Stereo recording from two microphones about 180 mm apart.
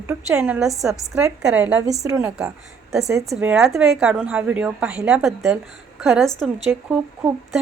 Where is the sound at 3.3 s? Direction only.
5° right (ahead or behind).